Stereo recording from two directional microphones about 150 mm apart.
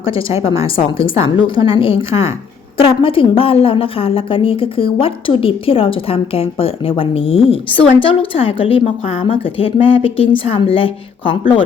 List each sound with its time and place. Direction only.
0.1 s a woman's voice: 40° left (ahead or behind)